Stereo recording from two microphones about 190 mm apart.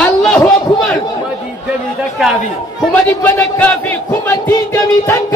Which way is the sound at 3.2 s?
10° left (ahead or behind).